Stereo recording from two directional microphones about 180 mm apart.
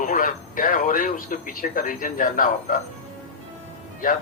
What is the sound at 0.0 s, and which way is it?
A man's voice, 50° left (ahead or behind).